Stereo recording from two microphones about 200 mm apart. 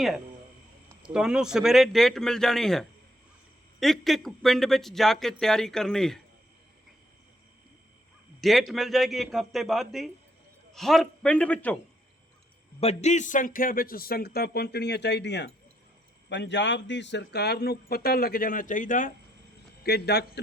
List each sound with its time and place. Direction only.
1.1 s a man's voice: 5° right (ahead or behind)
8.4 s a man's voice: centre (ahead or behind)
12.8 s speech: 35° left (ahead or behind)
19.8 s a man's voice: 55° left (ahead or behind)